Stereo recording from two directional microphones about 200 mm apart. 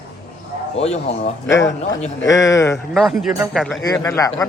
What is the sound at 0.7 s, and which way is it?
Speech, 30° left (ahead or behind).